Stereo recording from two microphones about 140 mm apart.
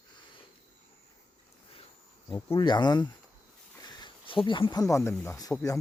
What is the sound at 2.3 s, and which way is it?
Speech, 35° left (ahead or behind).